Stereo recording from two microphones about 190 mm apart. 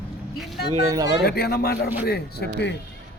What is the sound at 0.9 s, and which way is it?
Speech, 20° right (ahead or behind).